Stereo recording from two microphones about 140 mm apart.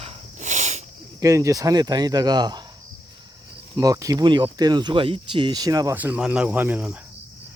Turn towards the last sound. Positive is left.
turn(degrees=-10)  # may be behind; listen again after turning